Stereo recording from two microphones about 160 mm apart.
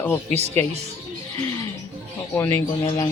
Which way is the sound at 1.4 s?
20° left (ahead or behind).